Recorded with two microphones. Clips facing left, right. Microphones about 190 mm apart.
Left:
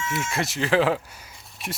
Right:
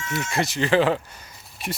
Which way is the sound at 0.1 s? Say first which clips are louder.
Right 4 dB; centre (ahead or behind).